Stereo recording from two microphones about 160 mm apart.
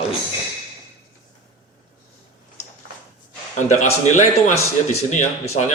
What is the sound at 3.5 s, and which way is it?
Speech, 50° left (ahead or behind).